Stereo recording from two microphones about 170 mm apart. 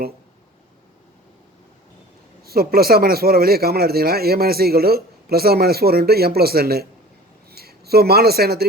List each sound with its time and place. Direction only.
2.4 s a man's voice: 65° right (ahead or behind)